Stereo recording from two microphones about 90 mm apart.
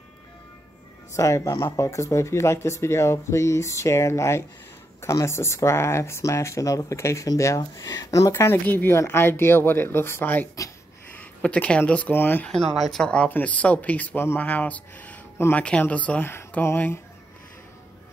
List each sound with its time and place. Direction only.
1.1 s speech: 35° left (ahead or behind)
12.4 s speech: centre (ahead or behind)
16.3 s mantra: 25° left (ahead or behind)